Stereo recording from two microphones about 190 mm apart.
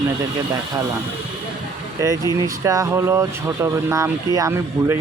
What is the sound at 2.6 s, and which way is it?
Speech, 15° right (ahead or behind).